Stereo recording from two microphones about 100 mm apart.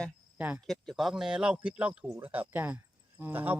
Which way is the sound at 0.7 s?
Centre (ahead or behind).